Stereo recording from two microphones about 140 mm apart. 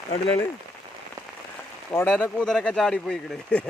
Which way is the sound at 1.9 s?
15° left (ahead or behind).